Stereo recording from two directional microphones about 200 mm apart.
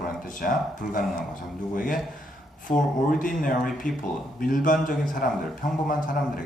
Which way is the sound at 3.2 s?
45° left (ahead or behind).